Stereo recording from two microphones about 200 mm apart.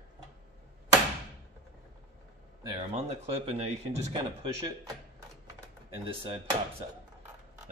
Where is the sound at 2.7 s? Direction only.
30° right (ahead or behind).